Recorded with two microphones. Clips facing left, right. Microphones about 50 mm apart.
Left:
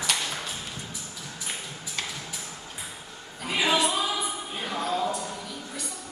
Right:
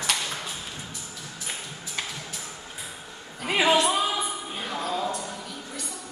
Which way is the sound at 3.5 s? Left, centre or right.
Right.